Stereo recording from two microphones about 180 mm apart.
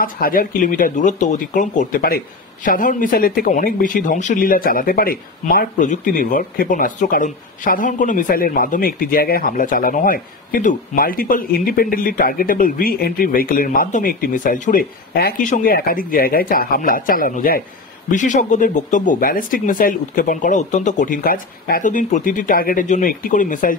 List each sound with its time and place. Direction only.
0.0 s speech: 50° left (ahead or behind)